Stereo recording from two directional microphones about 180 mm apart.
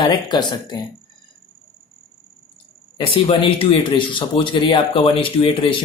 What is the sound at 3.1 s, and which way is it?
Speech, 30° left (ahead or behind).